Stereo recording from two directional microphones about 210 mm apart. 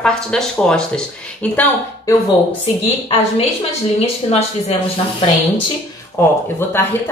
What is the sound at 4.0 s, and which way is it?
Speech, 30° left (ahead or behind).